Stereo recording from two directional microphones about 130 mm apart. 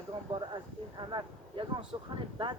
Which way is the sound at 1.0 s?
35° right (ahead or behind).